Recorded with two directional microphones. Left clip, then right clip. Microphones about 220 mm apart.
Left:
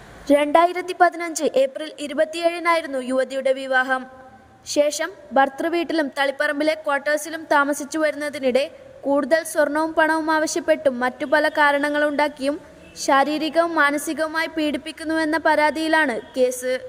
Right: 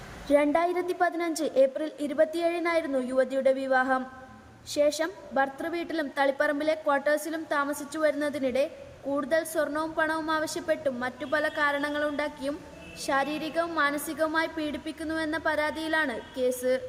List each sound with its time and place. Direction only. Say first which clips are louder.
0.3 s a woman's voice: left 8 dB; 35° left (ahead or behind)